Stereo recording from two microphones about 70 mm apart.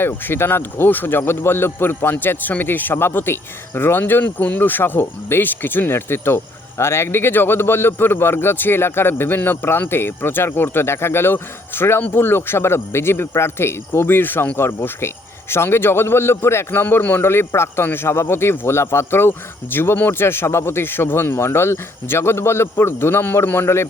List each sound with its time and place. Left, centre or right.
0.0 s speech: left
16.8 s speech: left